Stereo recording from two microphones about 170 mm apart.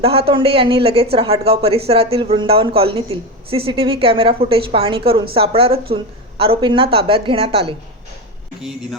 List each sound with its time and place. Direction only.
0.0 s speech: 35° right (ahead or behind)